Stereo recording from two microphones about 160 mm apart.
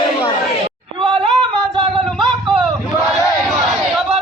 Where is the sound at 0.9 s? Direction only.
30° right (ahead or behind).